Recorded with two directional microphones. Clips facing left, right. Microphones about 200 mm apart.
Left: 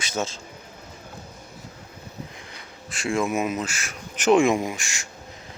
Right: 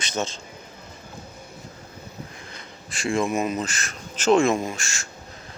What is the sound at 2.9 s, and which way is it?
Speech, 5° left (ahead or behind).